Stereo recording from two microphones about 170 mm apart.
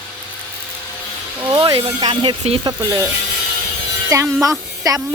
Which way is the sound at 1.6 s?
30° right (ahead or behind).